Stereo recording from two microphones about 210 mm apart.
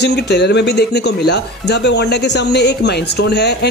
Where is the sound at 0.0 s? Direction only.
55° left (ahead or behind).